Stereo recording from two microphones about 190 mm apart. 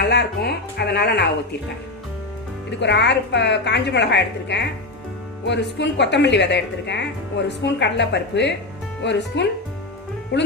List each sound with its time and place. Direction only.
0.0 s music: 60° left (ahead or behind)
2.6 s a woman's voice: 65° left (ahead or behind)